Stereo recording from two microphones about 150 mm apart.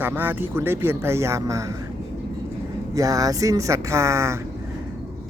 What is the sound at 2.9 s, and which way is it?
Speech, 20° right (ahead or behind).